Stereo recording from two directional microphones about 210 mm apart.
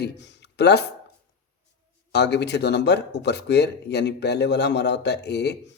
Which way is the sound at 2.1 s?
50° left (ahead or behind).